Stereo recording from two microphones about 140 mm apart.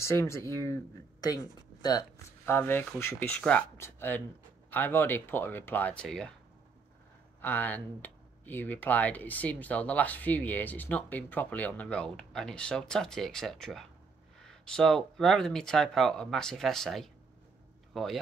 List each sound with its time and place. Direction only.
0.0 s speech: 20° left (ahead or behind)
7.4 s speech: 10° left (ahead or behind)